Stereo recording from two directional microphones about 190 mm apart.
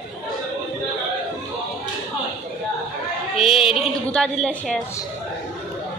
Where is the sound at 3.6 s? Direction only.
30° left (ahead or behind).